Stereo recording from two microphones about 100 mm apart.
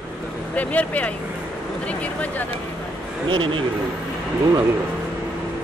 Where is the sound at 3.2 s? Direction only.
55° right (ahead or behind).